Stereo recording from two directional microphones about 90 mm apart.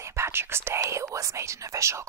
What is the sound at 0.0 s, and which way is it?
Speech, 30° right (ahead or behind).